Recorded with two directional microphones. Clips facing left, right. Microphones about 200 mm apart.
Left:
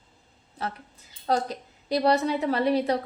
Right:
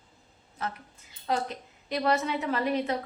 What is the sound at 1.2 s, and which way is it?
A woman's voice, 35° left (ahead or behind).